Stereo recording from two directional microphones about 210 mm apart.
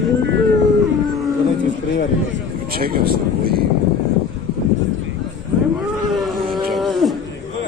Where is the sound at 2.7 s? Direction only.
45° right (ahead or behind).